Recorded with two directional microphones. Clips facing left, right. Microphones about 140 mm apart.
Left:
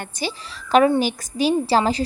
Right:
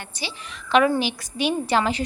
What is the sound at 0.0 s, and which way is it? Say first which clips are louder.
A woman's voice: left 6 dB; 45° left (ahead or behind).